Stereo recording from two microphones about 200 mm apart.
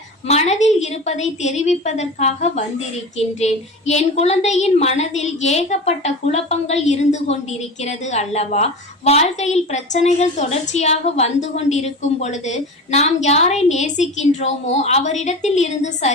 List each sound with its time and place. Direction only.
0.3 s a woman's voice: 35° left (ahead or behind)